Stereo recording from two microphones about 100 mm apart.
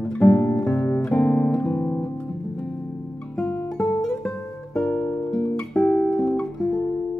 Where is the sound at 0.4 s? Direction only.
30° left (ahead or behind).